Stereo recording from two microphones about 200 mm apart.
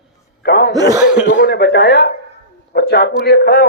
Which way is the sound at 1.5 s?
55° left (ahead or behind).